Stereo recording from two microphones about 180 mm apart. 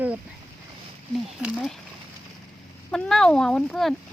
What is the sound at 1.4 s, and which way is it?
Speech, centre (ahead or behind).